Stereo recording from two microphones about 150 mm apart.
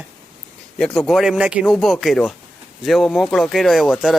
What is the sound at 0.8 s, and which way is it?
Speech, centre (ahead or behind).